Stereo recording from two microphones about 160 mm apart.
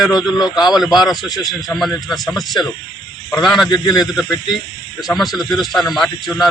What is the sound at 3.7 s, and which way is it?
Speech, 25° left (ahead or behind).